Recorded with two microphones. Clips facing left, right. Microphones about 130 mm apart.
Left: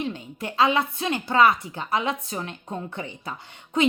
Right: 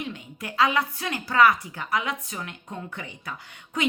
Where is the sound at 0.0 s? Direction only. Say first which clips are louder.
Left 5 dB; 30° left (ahead or behind).